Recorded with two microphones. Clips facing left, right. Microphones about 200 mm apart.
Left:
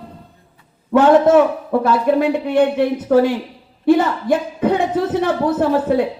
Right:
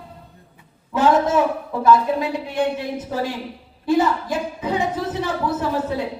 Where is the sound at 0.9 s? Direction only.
60° left (ahead or behind).